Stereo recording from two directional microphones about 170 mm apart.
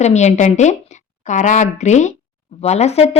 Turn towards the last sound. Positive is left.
turn(degrees=40)  # may be behind; listen again after turning